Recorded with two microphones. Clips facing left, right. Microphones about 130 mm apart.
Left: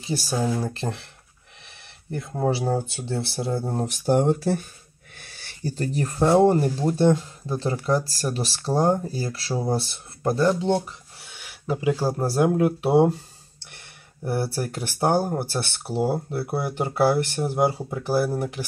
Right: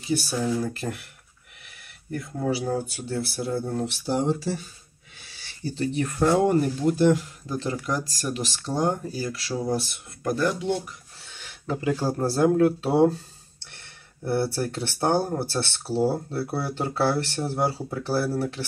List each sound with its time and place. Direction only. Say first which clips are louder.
0.0 s speech: even; 30° left (ahead or behind)
2.5 s speech: left 2 dB; 30° left (ahead or behind)
11.1 s speech: left 1 dB; 10° left (ahead or behind)
14.2 s speech: right 1 dB; 15° left (ahead or behind)